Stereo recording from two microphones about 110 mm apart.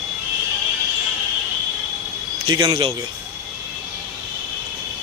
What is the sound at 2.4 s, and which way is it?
Speech, 40° right (ahead or behind).